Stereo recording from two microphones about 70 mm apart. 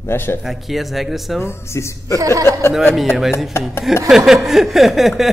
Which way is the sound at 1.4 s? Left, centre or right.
Left.